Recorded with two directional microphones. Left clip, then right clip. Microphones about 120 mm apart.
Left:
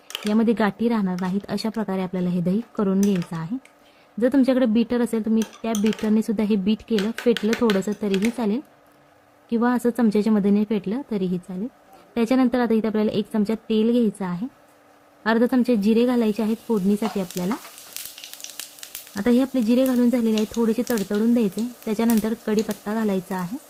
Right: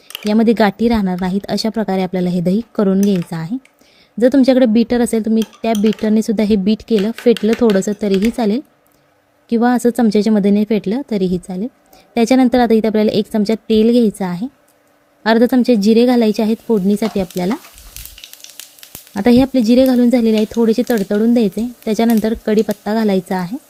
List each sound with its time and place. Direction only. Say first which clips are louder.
0.3 s a woman's voice: right 9 dB; 50° right (ahead or behind)
3.0 s speech: right 7 dB; centre (ahead or behind)
3.2 s a woman's voice: right 7 dB; 50° right (ahead or behind)
17.9 s fire: right 2 dB; centre (ahead or behind)
19.1 s a woman's voice: right 9 dB; 55° right (ahead or behind)